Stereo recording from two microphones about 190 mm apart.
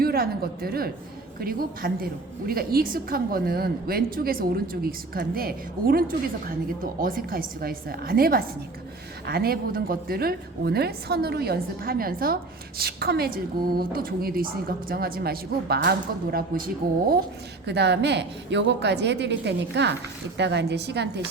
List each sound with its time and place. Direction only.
0.0 s a woman's voice: 55° right (ahead or behind)
17.7 s a woman's voice: 60° right (ahead or behind)